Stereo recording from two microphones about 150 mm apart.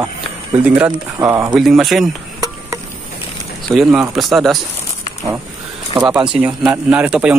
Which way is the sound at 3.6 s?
5° right (ahead or behind).